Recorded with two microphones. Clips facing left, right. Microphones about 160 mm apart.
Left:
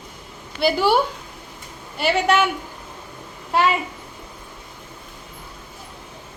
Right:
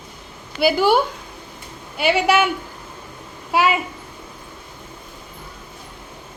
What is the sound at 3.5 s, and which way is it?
Speech, 5° right (ahead or behind).